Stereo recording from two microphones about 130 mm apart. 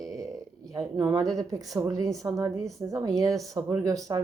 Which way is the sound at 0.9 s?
30° right (ahead or behind).